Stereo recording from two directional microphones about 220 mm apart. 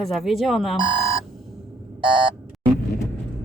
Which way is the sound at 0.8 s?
20° right (ahead or behind).